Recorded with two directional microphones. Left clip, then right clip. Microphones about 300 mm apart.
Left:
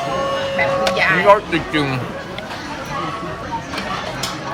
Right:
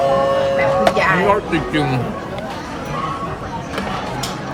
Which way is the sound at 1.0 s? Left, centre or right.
Right.